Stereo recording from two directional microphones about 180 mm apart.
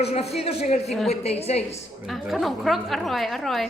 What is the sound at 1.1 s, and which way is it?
Speech, 35° left (ahead or behind).